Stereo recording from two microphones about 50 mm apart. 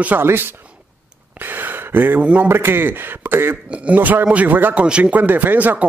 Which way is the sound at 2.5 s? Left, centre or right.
Right.